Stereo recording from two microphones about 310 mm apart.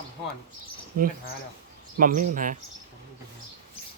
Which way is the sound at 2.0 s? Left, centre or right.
Right.